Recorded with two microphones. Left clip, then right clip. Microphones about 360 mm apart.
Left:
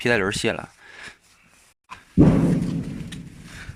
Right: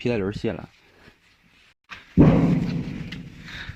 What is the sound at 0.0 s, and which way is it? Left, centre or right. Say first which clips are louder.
Speech: left 5 dB; left.